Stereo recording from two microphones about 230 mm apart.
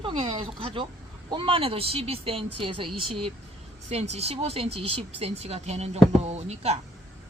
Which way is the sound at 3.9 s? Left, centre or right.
Right.